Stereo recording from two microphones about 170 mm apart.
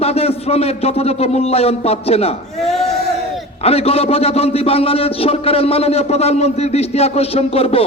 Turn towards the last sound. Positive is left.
turn(degrees=35)  # may be behind; listen again after turning